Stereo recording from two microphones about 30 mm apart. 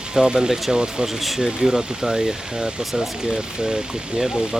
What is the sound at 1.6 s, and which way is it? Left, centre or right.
Speech, centre.